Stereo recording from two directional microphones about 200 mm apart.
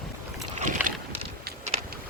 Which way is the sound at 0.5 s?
40° right (ahead or behind).